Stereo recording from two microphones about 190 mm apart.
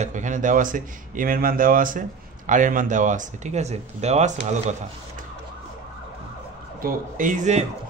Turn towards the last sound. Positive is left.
turn(degrees=-40)  # may be behind; listen again after turning